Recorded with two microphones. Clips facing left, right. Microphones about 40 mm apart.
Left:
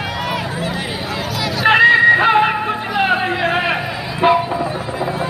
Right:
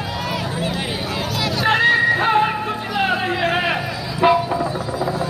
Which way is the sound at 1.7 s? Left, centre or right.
Left.